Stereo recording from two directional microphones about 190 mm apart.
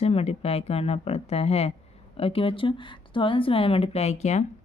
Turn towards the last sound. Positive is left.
turn(degrees=35)  # may be behind; listen again after turning